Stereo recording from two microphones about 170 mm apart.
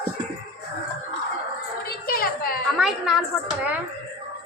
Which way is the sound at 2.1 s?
60° left (ahead or behind).